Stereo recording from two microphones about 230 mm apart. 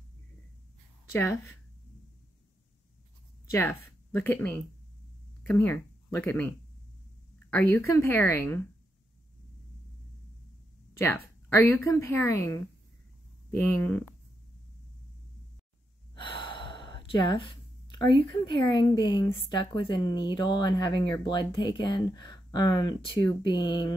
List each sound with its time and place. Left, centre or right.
1.1 s speech: centre
3.5 s speech: centre
7.5 s speech: centre
11.0 s speech: centre
16.2 s gasp: left
18.4 s a woman's voice: centre